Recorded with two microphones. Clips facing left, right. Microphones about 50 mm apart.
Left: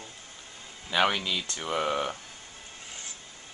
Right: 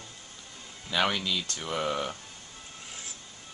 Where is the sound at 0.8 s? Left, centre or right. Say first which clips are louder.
Left 2 dB; centre.